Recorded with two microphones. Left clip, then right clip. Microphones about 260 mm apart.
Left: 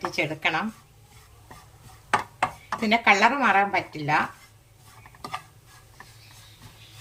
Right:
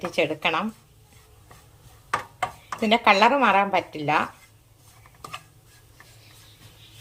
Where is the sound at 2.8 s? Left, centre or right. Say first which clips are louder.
Right 2 dB; centre.